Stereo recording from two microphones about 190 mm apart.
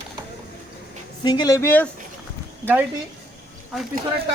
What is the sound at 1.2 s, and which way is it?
Speech, 20° left (ahead or behind).